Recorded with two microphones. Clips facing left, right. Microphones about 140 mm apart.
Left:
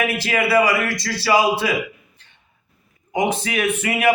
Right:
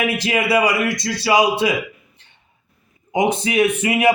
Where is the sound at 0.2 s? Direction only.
20° right (ahead or behind).